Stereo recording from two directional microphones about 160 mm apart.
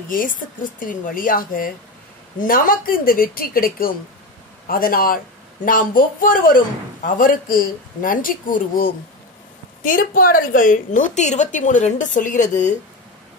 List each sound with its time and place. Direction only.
0.1 s a woman's voice: 60° left (ahead or behind)